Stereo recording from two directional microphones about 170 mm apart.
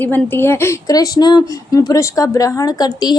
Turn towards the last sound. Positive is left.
turn(degrees=25)  # may be behind; listen again after turning